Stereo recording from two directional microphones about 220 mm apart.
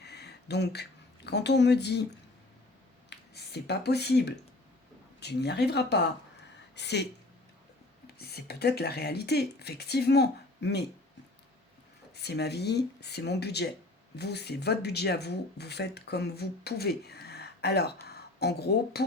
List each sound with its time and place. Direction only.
0.0 s a sound: 50° left (ahead or behind)
3.1 s speech: 50° left (ahead or behind)
12.1 s speech: 50° left (ahead or behind)